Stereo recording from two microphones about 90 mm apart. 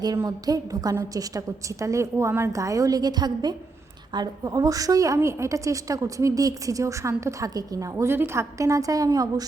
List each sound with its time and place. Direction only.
0.3 s a woman's voice: 45° right (ahead or behind)